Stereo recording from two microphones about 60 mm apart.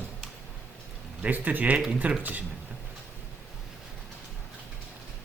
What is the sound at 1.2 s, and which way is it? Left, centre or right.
Speech, right.